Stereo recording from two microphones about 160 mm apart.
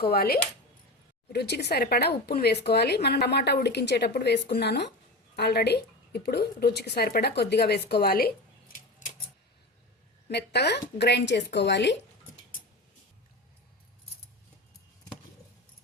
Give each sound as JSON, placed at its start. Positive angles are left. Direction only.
{"t": 0.0, "sound": "speech", "side_deg": 80}
{"t": 1.3, "sound": "a woman's voice", "side_deg": 90}
{"t": 10.2, "sound": "speech", "side_deg": 90}